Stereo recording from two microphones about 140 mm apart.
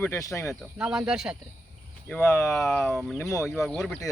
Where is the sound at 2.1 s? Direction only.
10° left (ahead or behind).